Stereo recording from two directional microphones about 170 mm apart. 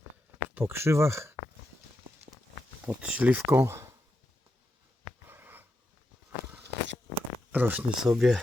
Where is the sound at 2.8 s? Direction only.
10° right (ahead or behind).